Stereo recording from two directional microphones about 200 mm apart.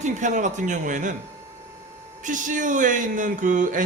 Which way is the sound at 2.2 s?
40° right (ahead or behind).